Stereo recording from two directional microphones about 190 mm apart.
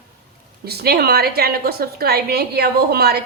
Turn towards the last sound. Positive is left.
turn(degrees=-55)  # may be behind; listen again after turning